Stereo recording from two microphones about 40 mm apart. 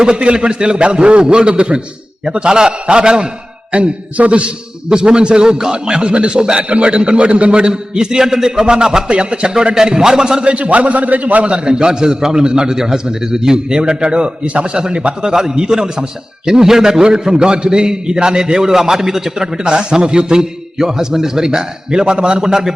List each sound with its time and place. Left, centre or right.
0.0 s a man's voice: right
3.7 s a man's voice: right
4.9 s a man's voice: right
10.5 s a man's voice: right
11.5 s a man's voice: right